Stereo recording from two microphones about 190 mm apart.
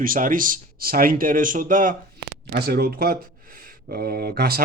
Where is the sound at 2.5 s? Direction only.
55° right (ahead or behind).